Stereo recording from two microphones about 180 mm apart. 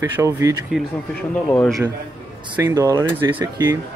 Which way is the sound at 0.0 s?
15° right (ahead or behind).